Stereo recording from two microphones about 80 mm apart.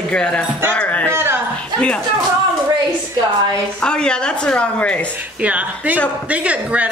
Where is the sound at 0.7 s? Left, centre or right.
Centre.